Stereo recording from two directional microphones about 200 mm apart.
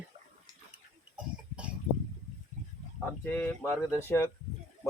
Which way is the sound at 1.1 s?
5° right (ahead or behind).